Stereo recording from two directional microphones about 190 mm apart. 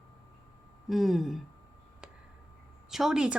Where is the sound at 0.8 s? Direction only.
Centre (ahead or behind).